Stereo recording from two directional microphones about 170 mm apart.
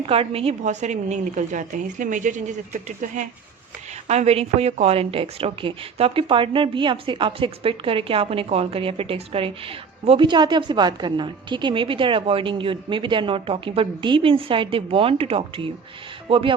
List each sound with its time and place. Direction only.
0.0 s a woman's voice: 35° right (ahead or behind)